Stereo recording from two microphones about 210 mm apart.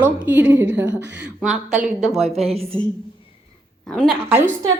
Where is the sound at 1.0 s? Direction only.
55° right (ahead or behind).